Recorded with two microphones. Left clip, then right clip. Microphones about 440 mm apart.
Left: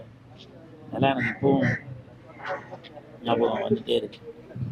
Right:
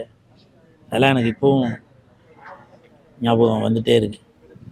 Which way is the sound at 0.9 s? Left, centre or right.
Right.